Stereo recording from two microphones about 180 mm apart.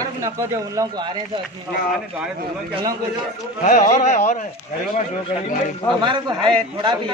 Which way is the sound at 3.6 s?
45° left (ahead or behind).